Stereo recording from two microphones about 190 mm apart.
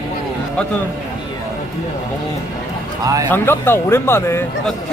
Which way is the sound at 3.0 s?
20° right (ahead or behind).